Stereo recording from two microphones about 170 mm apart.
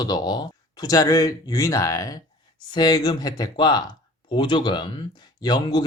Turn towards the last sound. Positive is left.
turn(degrees=25)  # may be behind; listen again after turning